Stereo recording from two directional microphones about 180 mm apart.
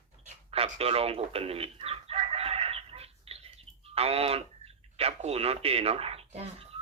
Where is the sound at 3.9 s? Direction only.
35° right (ahead or behind).